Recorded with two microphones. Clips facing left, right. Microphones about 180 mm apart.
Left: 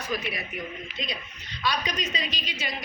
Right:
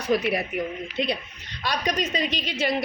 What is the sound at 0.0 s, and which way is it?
A woman's voice, 65° right (ahead or behind).